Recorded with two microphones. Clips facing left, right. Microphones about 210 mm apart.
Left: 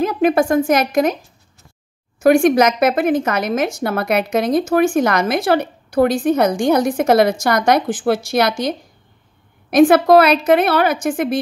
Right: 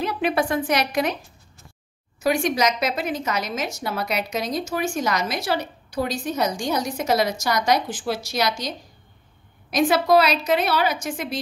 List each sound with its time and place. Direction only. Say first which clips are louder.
0.0 s a woman's voice: left 8 dB; 45° left (ahead or behind)